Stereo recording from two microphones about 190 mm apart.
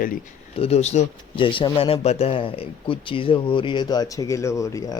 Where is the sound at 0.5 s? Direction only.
35° left (ahead or behind).